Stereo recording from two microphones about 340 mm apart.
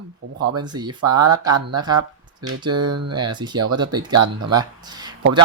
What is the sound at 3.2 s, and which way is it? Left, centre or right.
Speech, centre.